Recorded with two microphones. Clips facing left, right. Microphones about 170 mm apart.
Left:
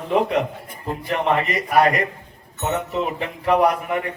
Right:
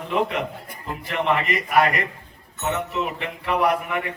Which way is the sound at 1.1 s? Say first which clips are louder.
Left 2 dB; 35° left (ahead or behind).